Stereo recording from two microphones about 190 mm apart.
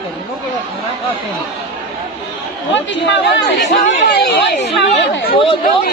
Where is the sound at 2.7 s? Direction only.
70° left (ahead or behind).